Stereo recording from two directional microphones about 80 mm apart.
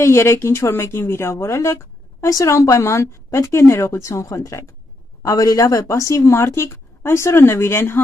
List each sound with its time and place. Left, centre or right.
0.0 s speech: left